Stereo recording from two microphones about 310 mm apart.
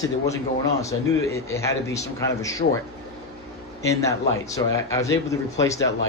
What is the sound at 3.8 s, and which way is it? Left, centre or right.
Speech, centre.